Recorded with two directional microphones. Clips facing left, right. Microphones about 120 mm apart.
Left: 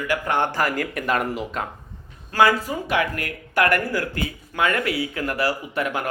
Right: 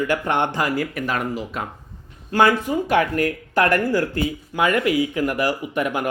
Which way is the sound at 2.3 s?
20° right (ahead or behind).